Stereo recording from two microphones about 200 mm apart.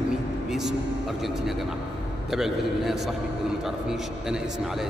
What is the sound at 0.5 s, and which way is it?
Music, centre (ahead or behind).